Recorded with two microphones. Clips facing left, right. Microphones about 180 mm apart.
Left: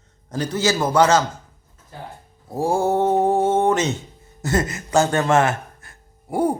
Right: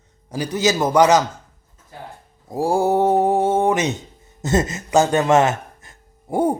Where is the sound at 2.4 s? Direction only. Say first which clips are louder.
Right 2 dB; 15° right (ahead or behind).